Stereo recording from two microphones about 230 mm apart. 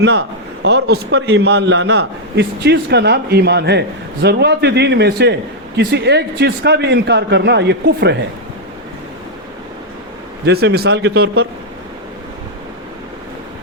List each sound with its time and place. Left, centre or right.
0.0 s a man's voice: right
10.4 s a man's voice: right